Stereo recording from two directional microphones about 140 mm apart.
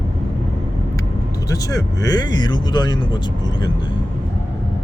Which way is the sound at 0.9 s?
25° left (ahead or behind).